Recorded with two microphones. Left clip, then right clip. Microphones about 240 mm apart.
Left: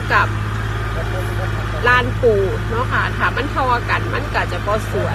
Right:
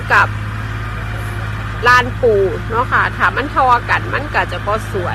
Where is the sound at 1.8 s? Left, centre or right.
Centre.